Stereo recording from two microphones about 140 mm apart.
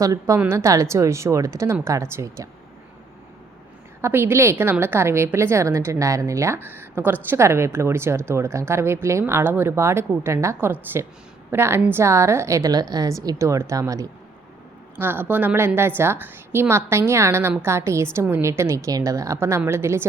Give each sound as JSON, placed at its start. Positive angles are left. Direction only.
{"t": 0.0, "sound": "a woman's voice", "side_deg": -25}
{"t": 4.0, "sound": "a woman's voice", "side_deg": -15}